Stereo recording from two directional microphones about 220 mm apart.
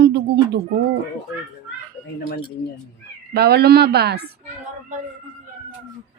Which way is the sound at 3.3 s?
45° right (ahead or behind).